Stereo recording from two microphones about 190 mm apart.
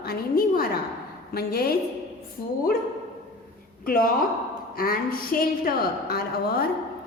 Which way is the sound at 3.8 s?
50° left (ahead or behind).